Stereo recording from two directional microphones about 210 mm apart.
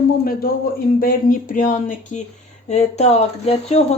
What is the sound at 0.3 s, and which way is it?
Speech, 45° left (ahead or behind).